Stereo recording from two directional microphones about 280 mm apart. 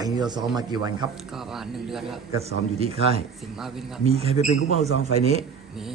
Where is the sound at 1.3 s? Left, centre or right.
Centre.